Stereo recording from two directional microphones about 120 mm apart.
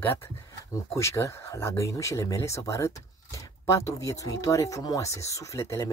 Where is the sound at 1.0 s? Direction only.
25° left (ahead or behind).